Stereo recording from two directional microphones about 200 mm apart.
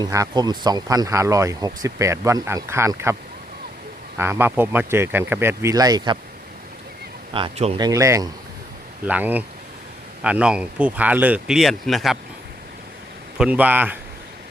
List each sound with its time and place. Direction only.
0.0 s speech: 20° right (ahead or behind)
4.2 s speech: 10° right (ahead or behind)
7.3 s speech: 30° right (ahead or behind)
7.8 s speech: 15° right (ahead or behind); by 12.1 s centre (ahead or behind)
13.3 s speech: 5° right (ahead or behind)